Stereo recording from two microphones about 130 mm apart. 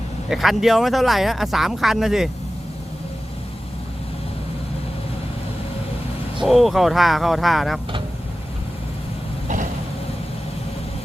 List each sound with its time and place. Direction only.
0.3 s speech: centre (ahead or behind)
6.4 s speech: centre (ahead or behind)